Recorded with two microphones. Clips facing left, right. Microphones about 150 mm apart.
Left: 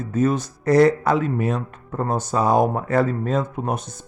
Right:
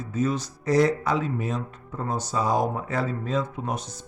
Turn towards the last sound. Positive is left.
turn(degrees=55)  # may be behind; listen again after turning